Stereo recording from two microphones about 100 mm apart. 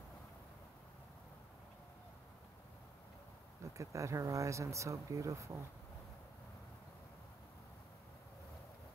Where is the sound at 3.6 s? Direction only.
30° right (ahead or behind).